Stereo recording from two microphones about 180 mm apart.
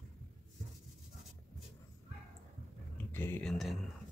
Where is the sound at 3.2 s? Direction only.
10° left (ahead or behind).